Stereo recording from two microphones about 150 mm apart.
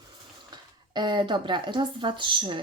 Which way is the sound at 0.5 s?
30° right (ahead or behind).